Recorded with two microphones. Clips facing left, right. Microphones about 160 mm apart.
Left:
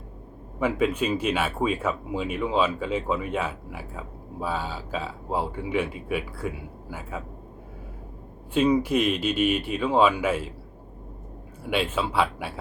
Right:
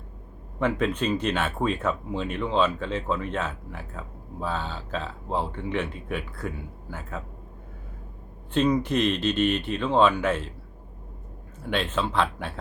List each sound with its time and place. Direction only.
0.6 s speech: 10° left (ahead or behind)
8.5 s speech: 10° left (ahead or behind)
11.6 s speech: 10° left (ahead or behind)